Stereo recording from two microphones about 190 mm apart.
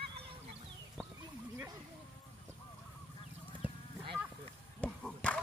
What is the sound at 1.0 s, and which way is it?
Chicken, centre (ahead or behind).